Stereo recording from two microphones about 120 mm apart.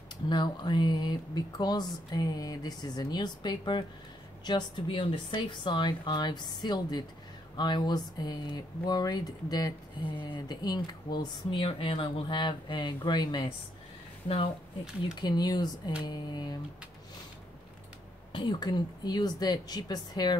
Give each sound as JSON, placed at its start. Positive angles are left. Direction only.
{"t": 0.3, "sound": "speech", "side_deg": 40}
{"t": 15.1, "sound": "speech", "side_deg": 35}
{"t": 18.3, "sound": "speech", "side_deg": 40}